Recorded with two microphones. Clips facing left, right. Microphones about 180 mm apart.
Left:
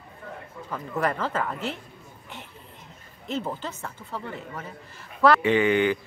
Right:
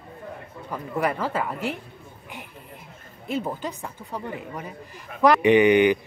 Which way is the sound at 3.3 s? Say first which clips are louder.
Right 2 dB; 10° right (ahead or behind).